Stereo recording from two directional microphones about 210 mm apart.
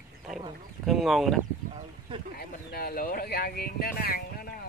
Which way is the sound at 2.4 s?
45° left (ahead or behind).